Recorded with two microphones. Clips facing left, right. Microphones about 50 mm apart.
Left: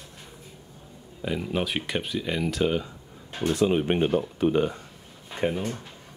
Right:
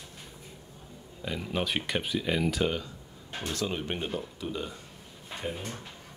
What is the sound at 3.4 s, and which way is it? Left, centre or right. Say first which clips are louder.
Speech: left 10 dB; centre.